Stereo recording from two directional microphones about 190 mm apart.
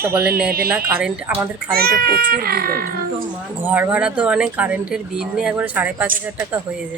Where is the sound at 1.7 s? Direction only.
55° right (ahead or behind).